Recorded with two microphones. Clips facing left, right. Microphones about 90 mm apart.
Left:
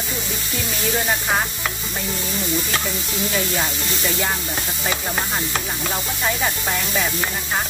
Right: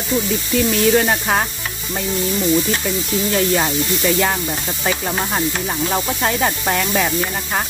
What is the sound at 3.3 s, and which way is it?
Snake, 55° right (ahead or behind).